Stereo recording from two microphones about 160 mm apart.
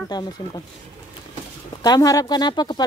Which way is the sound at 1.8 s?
25° left (ahead or behind).